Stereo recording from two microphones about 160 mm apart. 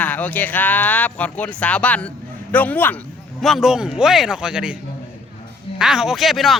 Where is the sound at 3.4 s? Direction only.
Centre (ahead or behind).